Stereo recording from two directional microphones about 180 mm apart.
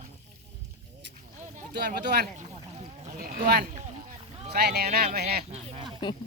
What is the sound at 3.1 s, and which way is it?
Speech, 50° right (ahead or behind).